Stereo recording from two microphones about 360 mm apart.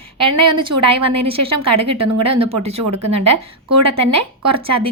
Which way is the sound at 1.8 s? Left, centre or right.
Centre.